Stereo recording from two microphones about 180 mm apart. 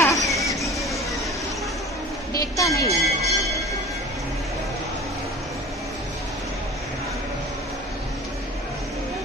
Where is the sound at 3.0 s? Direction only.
Centre (ahead or behind).